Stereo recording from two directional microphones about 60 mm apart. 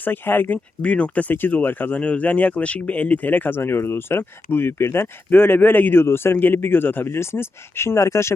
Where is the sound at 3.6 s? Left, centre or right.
Left.